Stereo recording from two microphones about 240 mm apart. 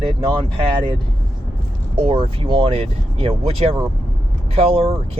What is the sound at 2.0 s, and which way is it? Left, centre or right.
Speech, right.